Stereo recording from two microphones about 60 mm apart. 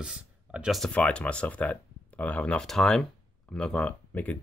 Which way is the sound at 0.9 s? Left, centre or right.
Centre.